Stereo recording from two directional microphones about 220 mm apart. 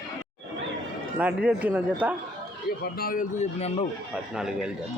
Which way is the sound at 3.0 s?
40° left (ahead or behind).